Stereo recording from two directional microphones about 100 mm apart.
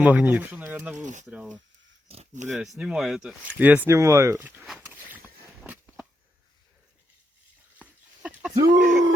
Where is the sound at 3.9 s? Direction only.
30° right (ahead or behind).